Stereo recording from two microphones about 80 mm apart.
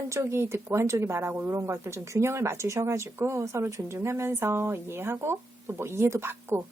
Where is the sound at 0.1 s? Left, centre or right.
Right.